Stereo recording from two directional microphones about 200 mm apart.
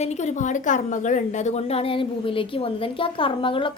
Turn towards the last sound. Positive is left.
turn(degrees=25)  # may be behind; listen again after turning